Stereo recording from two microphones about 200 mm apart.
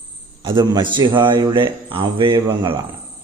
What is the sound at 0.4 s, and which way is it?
A man's voice, 20° right (ahead or behind).